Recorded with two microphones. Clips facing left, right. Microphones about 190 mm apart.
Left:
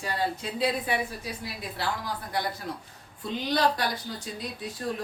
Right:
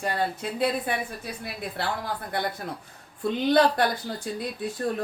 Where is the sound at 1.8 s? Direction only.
55° right (ahead or behind).